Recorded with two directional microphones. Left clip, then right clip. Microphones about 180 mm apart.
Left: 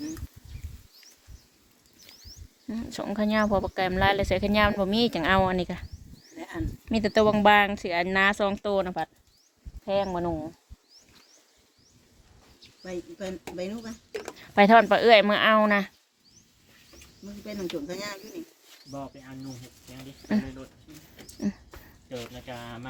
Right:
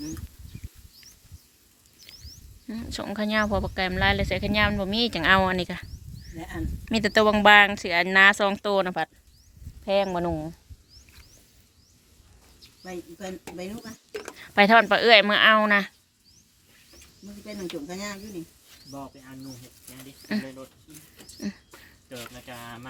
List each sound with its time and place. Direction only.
2.0 s a sound: 20° left (ahead or behind)
2.6 s speech: 10° left (ahead or behind); by 5.1 s 25° left (ahead or behind)
5.1 s speech: 5° left (ahead or behind); by 10.5 s 25° right (ahead or behind)
12.8 s speech: 40° right (ahead or behind)
14.1 s speech: 25° right (ahead or behind)
14.3 s speech: 5° left (ahead or behind)
17.4 s speech: 35° right (ahead or behind)
20.2 s speech: 15° left (ahead or behind)
21.3 s a sound: 10° left (ahead or behind)
22.4 s speech: centre (ahead or behind)